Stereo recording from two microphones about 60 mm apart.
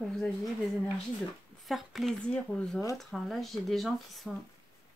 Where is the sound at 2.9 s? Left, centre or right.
Centre.